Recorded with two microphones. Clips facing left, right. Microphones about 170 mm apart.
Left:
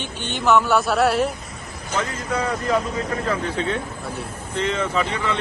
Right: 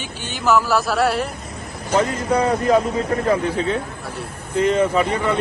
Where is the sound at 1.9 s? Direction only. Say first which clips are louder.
Right 7 dB; 35° right (ahead or behind).